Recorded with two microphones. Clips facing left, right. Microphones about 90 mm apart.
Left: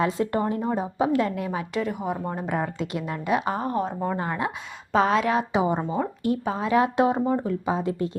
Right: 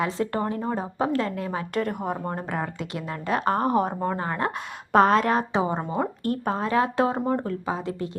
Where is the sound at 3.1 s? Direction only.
10° left (ahead or behind).